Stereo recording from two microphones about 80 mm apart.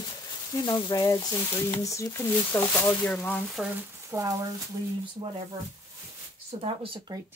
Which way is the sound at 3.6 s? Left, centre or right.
Centre.